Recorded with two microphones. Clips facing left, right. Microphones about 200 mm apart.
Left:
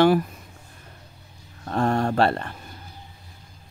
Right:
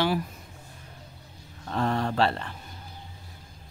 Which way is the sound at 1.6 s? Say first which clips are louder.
Left 4 dB; 50° left (ahead or behind).